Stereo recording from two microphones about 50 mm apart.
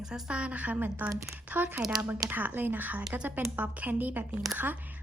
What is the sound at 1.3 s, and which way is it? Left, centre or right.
A woman's voice, right.